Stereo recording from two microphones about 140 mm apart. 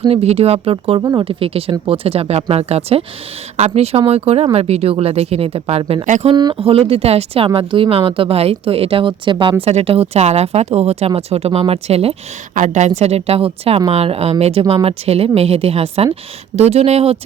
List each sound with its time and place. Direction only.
0.1 s speech: 50° right (ahead or behind)
6.1 s a woman's voice: 60° right (ahead or behind)
6.3 s speech: 35° right (ahead or behind)
12.5 s a woman's voice: 55° right (ahead or behind)